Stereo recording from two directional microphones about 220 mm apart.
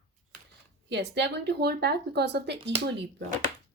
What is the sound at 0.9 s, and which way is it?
A woman's voice, 55° right (ahead or behind).